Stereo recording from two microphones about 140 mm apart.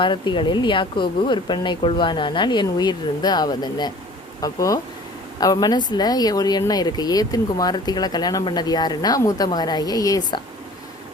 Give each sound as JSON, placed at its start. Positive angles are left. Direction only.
{"t": 0.0, "sound": "speech", "side_deg": 35}